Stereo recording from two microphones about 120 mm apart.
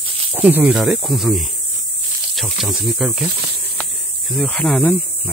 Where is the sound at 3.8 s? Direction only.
Centre (ahead or behind).